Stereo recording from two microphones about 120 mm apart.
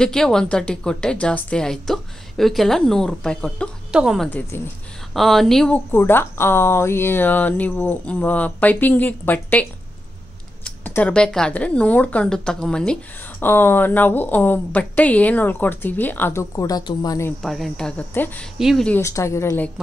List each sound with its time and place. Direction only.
0.0 s a woman's voice: 5° left (ahead or behind)
3.9 s a woman's voice: 5° right (ahead or behind)
4.3 s speech: 15° left (ahead or behind)
5.1 s a woman's voice: centre (ahead or behind)
5.9 s speech: 20° left (ahead or behind)
11.0 s speech: 10° left (ahead or behind); by 17.2 s 35° left (ahead or behind)
17.4 s a woman's voice: centre (ahead or behind)
18.6 s a woman's voice: 5° right (ahead or behind)
18.9 s speech: 25° left (ahead or behind)